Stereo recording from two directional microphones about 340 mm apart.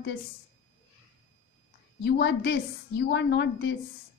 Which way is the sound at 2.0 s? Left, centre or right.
Left.